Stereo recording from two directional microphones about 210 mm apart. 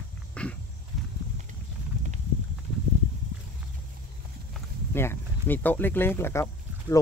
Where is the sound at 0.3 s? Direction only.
5° left (ahead or behind).